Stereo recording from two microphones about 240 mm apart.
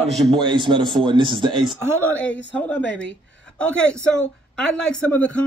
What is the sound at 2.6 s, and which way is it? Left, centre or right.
A woman's voice, centre.